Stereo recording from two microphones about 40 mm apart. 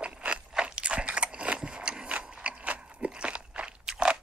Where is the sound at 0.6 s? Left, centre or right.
Right.